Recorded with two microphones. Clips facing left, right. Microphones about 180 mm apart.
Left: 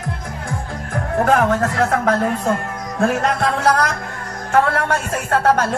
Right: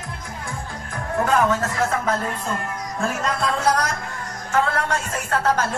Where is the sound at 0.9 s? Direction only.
60° left (ahead or behind).